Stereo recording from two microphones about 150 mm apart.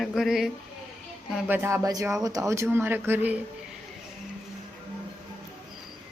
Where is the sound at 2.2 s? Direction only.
25° right (ahead or behind).